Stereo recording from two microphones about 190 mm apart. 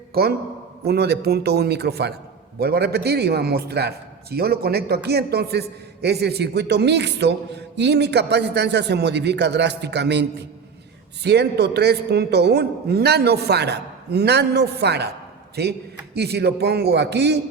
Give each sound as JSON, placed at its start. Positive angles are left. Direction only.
{"t": 0.1, "sound": "a man's voice", "side_deg": -55}